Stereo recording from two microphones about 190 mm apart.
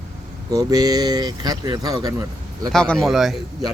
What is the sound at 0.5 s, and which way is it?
Speech, 20° right (ahead or behind).